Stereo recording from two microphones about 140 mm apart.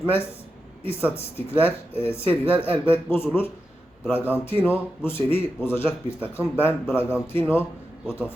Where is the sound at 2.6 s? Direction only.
15° left (ahead or behind).